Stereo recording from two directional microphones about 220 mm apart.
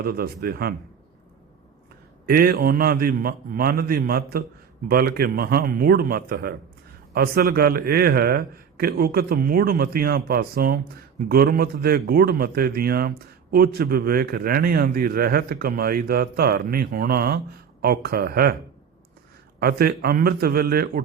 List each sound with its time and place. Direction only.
0.0 s a man's voice: 45° right (ahead or behind)
2.2 s a man's voice: 45° right (ahead or behind)
19.5 s a man's voice: 45° right (ahead or behind)